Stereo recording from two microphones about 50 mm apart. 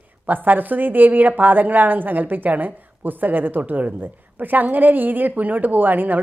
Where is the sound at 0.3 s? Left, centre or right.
Right.